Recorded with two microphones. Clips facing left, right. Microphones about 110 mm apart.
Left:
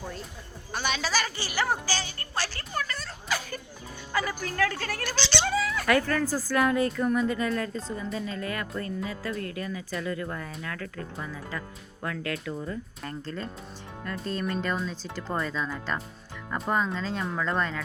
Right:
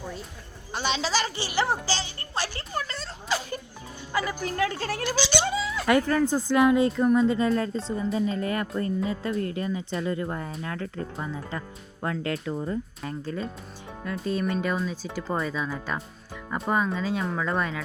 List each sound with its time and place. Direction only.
0.7 s a sound: 25° right (ahead or behind)
5.0 s speech: 10° right (ahead or behind); by 12.7 s 30° right (ahead or behind)
13.0 s speech: 10° right (ahead or behind)